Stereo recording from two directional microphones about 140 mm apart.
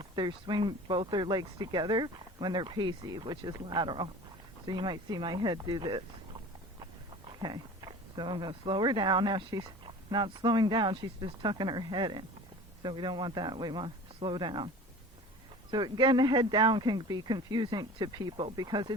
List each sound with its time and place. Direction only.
0.0 s speech: 35° right (ahead or behind)
7.3 s speech: 35° right (ahead or behind)
15.7 s speech: 30° right (ahead or behind)